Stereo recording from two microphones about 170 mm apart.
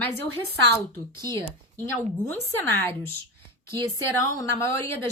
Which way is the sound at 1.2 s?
25° right (ahead or behind).